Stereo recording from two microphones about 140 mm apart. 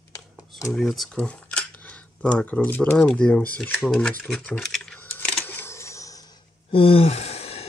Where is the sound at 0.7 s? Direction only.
Centre (ahead or behind).